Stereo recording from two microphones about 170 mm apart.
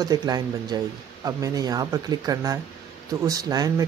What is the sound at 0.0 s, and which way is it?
Speech, 25° right (ahead or behind).